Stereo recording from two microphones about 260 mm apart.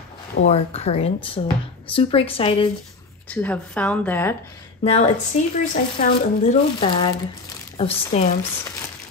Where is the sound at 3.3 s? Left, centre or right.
Centre.